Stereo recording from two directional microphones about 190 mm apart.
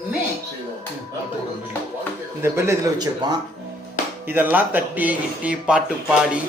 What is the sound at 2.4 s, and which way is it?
Speech, 15° right (ahead or behind).